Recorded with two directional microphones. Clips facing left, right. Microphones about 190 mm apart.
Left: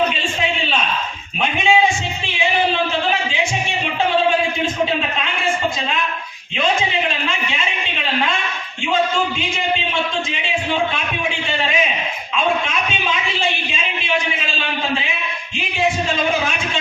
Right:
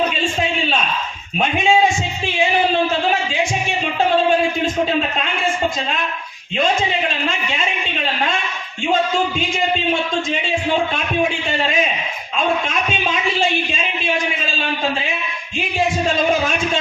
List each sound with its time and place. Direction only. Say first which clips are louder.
1.4 s speech: right 1 dB; 45° right (ahead or behind)